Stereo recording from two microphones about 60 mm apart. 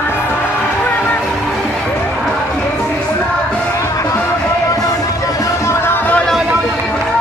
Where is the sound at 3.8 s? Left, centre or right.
Left.